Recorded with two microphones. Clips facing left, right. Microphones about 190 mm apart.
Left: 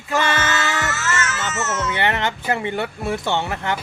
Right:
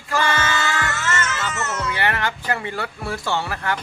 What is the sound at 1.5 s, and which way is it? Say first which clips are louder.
Speech: left 2 dB; 5° left (ahead or behind).